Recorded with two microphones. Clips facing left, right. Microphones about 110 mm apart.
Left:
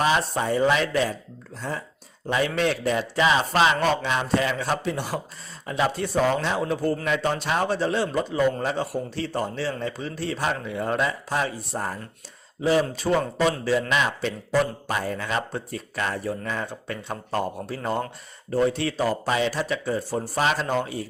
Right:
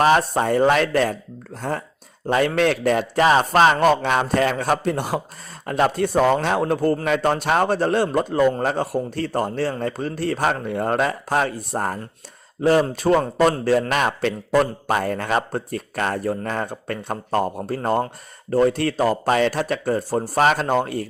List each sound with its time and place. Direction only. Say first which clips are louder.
0.0 s a man's voice: right 6 dB; 45° right (ahead or behind)
13.0 s a man's voice: right 5 dB; 50° right (ahead or behind)